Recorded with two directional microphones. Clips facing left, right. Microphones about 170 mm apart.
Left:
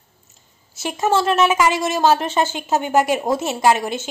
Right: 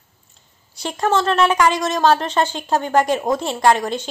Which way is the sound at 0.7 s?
5° left (ahead or behind).